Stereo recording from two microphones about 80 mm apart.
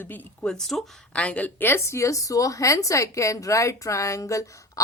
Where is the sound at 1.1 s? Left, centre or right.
Centre.